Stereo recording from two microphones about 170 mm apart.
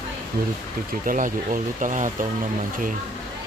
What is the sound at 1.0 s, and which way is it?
Speech, 50° right (ahead or behind).